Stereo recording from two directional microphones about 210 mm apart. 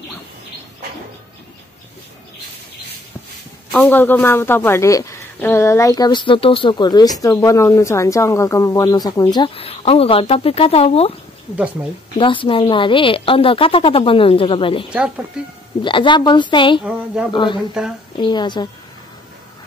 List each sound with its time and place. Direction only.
3.7 s a woman's voice: 10° left (ahead or behind); by 11.1 s 30° left (ahead or behind)
12.2 s a woman's voice: 25° left (ahead or behind)
14.9 s speech: 5° right (ahead or behind)
15.8 s a woman's voice: 25° left (ahead or behind)
16.8 s speech: 5° right (ahead or behind)
17.3 s a woman's voice: 20° left (ahead or behind)